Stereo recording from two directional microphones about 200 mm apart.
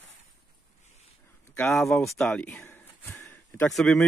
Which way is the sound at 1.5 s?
5° left (ahead or behind).